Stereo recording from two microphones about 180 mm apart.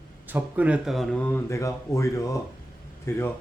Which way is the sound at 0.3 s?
10° right (ahead or behind).